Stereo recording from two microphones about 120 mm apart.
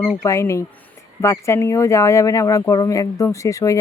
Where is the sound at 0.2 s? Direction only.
25° left (ahead or behind).